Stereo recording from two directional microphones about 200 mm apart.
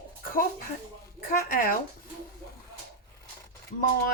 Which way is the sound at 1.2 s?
45° left (ahead or behind).